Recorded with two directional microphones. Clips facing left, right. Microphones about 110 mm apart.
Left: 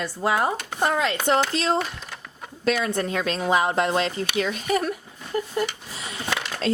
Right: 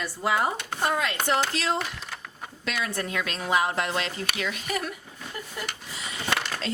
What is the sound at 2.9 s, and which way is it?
A woman's voice, 30° left (ahead or behind).